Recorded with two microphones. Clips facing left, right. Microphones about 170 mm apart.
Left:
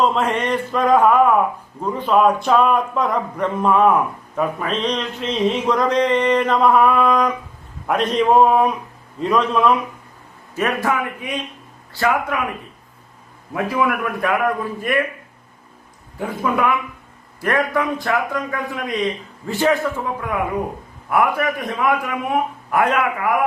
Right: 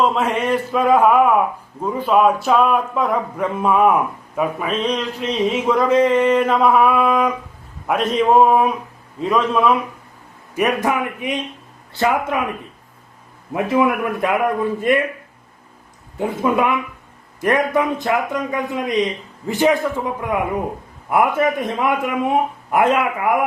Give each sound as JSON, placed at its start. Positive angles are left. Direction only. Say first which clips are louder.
{"t": 0.0, "sound": "speech", "louder": "even", "side_deg": 0}
{"t": 10.5, "sound": "a man's voice", "louder": "right 2 dB", "side_deg": -15}
{"t": 13.5, "sound": "a man's voice", "louder": "right 3 dB", "side_deg": -25}
{"t": 16.1, "sound": "a man's voice", "louder": "right 3 dB", "side_deg": -25}